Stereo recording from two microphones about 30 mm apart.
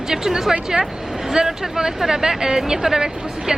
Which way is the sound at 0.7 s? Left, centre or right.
Right.